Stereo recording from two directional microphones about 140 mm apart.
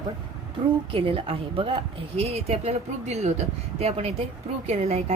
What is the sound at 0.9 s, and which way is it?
A woman's voice, 40° right (ahead or behind).